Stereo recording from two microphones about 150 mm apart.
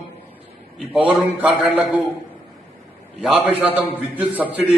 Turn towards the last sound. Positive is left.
turn(degrees=-10)  # may be behind; listen again after turning